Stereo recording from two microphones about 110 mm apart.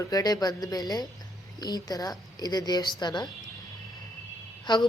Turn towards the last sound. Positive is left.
turn(degrees=40)  # may be behind; listen again after turning